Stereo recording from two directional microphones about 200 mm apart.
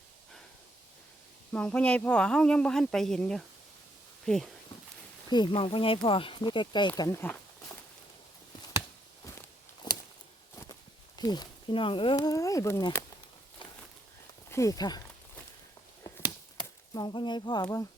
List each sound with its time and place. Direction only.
1.5 s a woman's voice: 5° left (ahead or behind)
5.3 s speech: 25° left (ahead or behind)
9.8 s a sound: 20° left (ahead or behind)
11.2 s speech: 20° left (ahead or behind)
14.5 s speech: 15° left (ahead or behind)
16.6 s speech: 20° left (ahead or behind)